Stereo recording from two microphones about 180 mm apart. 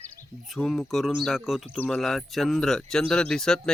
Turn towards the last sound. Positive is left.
turn(degrees=5)  # may be behind; listen again after turning